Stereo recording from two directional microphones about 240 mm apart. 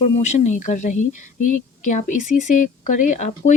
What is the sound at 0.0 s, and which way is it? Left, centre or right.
Speech, left.